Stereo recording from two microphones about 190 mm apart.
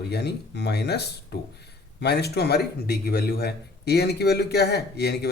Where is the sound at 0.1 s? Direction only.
60° left (ahead or behind).